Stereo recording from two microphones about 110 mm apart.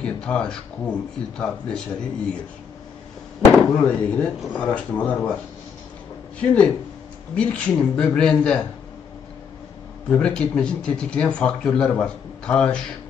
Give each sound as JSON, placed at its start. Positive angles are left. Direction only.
{"t": 0.0, "sound": "speech", "side_deg": 10}
{"t": 3.5, "sound": "speech", "side_deg": 20}
{"t": 6.4, "sound": "speech", "side_deg": 10}
{"t": 10.0, "sound": "speech", "side_deg": 10}